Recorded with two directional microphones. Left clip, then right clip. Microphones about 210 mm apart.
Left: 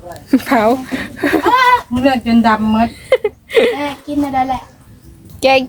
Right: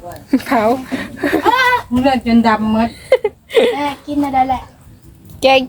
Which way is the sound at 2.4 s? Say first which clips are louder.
Left 1 dB; 45° left (ahead or behind).